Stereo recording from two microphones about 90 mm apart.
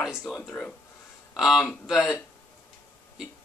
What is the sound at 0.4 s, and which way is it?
Speech, 15° left (ahead or behind).